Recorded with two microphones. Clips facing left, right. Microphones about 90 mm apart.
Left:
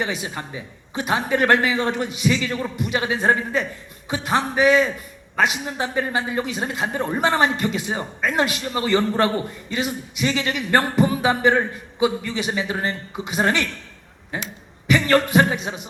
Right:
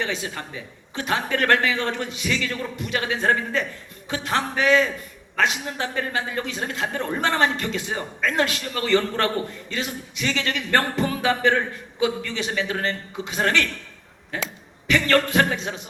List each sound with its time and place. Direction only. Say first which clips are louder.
0.0 s a man's voice: left 2 dB; 15° left (ahead or behind)